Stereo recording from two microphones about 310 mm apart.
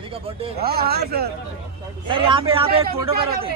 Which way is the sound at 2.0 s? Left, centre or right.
Centre.